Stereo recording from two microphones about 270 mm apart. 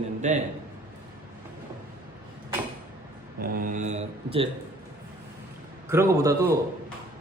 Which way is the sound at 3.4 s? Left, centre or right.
Right.